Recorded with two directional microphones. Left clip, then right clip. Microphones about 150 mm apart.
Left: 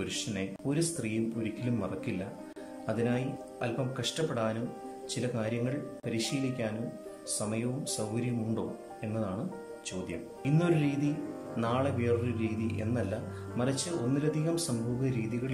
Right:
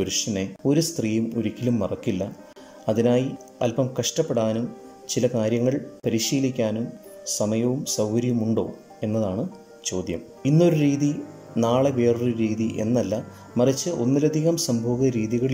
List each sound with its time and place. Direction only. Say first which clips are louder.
0.0 s a man's voice: right 10 dB; 40° right (ahead or behind)
10.5 s a man's voice: right 10 dB; 40° right (ahead or behind)
10.9 s speech: right 9 dB; 5° left (ahead or behind)
11.5 s a man's voice: right 11 dB; 40° right (ahead or behind)